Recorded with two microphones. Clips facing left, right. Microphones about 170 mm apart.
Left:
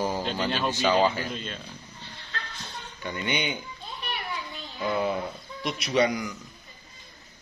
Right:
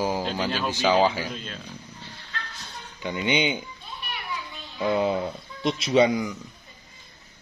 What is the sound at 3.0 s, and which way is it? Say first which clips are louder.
Speech: right 5 dB; 15° right (ahead or behind).